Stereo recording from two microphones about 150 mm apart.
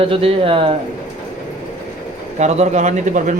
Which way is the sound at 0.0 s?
40° right (ahead or behind).